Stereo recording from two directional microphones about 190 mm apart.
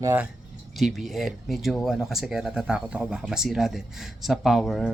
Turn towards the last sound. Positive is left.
turn(degrees=0)  # may be behind; listen again after turning